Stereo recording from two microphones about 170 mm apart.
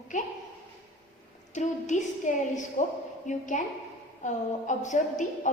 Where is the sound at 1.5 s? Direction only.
45° left (ahead or behind).